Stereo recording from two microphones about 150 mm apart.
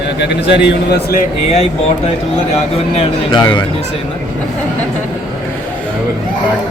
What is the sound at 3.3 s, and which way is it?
Speech, 30° left (ahead or behind).